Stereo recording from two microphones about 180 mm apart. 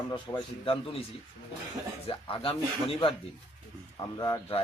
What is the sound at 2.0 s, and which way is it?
Speech, 30° left (ahead or behind).